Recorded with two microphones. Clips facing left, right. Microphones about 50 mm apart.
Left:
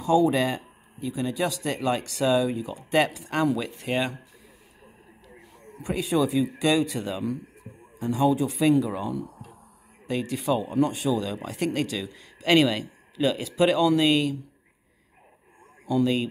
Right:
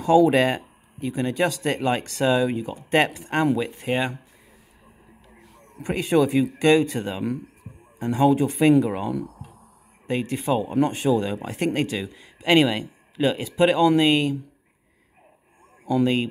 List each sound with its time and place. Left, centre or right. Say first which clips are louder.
0.0 s speech: right 4 dB; right
5.8 s speech: right 4 dB; right
8.0 s speech: right 3 dB; right
10.0 s speech: right 2 dB; right
12.1 s speech: right 1 dB; centre
15.9 s speech: right 2 dB; right